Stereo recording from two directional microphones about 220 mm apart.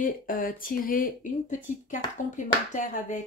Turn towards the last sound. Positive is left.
turn(degrees=35)  # may be behind; listen again after turning